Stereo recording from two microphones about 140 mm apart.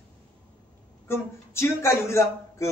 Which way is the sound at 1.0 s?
20° left (ahead or behind).